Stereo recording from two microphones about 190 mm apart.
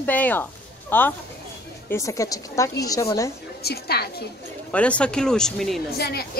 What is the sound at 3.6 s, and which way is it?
Speech, 55° left (ahead or behind).